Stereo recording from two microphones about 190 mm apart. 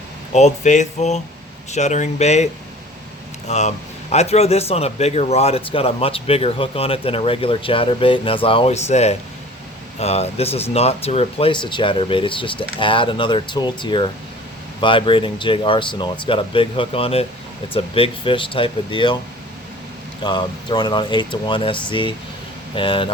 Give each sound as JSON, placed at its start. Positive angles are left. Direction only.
{"t": 0.3, "sound": "speech", "side_deg": 40}
{"t": 20.2, "sound": "speech", "side_deg": 25}